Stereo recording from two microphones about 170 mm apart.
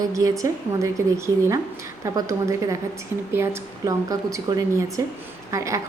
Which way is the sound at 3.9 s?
20° right (ahead or behind).